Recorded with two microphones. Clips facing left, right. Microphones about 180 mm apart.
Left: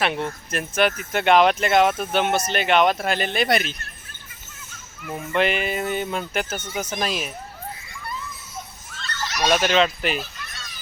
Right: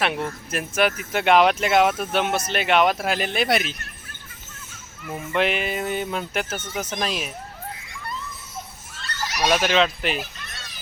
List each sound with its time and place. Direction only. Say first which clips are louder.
0.0 s speech: left 1 dB; centre (ahead or behind)
5.0 s speech: left 1 dB; centre (ahead or behind)
9.0 s fowl: even; 10° right (ahead or behind)